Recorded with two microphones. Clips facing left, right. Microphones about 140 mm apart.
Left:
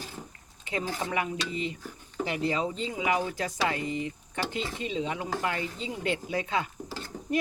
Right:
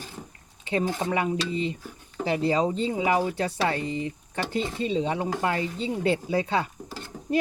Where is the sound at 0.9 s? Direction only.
30° right (ahead or behind).